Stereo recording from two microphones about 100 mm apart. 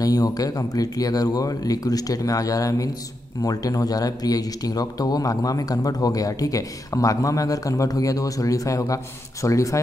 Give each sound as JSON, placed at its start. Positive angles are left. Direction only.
{"t": 0.0, "sound": "speech", "side_deg": 40}